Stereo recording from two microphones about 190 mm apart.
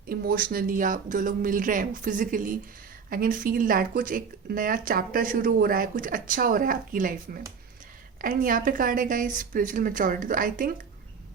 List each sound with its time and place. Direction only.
0.1 s speech: 50° right (ahead or behind)